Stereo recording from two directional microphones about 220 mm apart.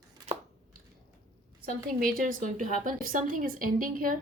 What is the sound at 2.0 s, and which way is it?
Speech, 40° right (ahead or behind).